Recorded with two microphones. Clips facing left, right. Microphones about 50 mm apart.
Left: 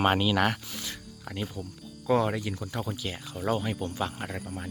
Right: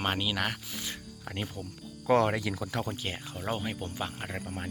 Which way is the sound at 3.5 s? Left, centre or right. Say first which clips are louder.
Left 5 dB; centre.